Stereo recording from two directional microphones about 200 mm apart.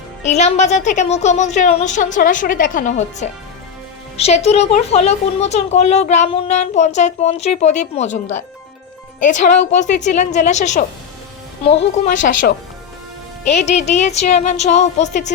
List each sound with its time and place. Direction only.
0.2 s speech: 35° left (ahead or behind)
13.5 s speech: 35° left (ahead or behind)